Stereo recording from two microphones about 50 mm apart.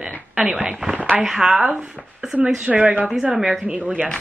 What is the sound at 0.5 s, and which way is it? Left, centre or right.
Speech, centre.